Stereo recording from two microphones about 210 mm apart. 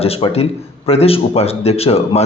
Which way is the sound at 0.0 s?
30° left (ahead or behind).